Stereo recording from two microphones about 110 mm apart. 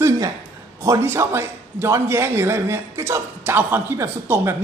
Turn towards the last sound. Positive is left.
turn(degrees=-25)  # may be behind; listen again after turning